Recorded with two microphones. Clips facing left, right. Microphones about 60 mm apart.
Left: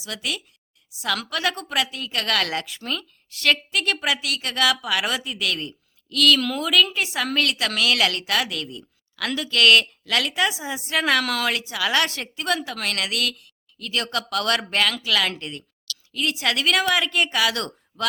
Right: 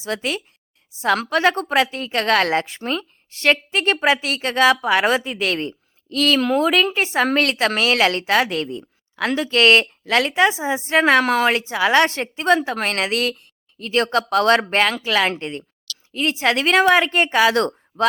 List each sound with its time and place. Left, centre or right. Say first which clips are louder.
0.0 s a woman's voice: right 6 dB; right